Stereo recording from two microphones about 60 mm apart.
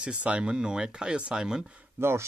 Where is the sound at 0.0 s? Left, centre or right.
Centre.